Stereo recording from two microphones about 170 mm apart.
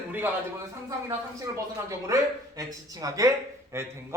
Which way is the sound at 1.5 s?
20° right (ahead or behind).